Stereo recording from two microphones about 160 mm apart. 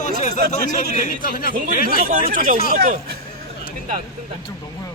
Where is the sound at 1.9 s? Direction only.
65° right (ahead or behind).